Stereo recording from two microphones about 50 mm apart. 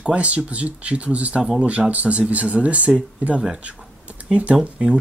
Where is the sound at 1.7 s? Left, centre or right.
Right.